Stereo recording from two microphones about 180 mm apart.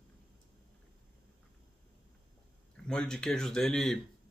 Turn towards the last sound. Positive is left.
turn(degrees=5)  # may be behind; listen again after turning